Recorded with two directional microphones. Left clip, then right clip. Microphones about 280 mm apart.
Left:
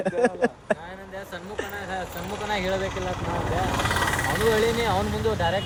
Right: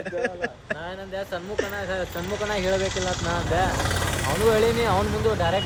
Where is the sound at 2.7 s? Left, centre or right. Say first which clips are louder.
Right 3 dB; centre.